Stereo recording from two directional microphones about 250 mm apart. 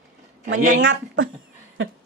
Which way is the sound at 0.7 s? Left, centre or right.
Right.